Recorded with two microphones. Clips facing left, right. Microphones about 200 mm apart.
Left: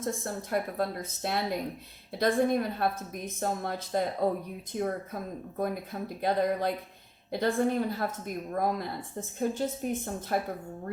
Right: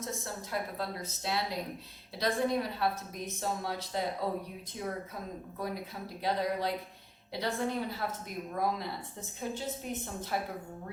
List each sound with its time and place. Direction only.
0.0 s a woman's voice: 55° left (ahead or behind)